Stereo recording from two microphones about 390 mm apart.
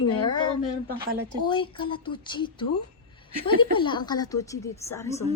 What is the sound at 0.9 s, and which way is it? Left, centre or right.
Speech, right.